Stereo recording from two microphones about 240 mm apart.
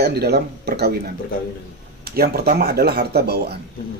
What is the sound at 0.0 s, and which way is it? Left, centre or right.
Speech, right.